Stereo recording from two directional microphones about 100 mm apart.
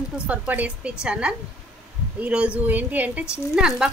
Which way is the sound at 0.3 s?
15° right (ahead or behind).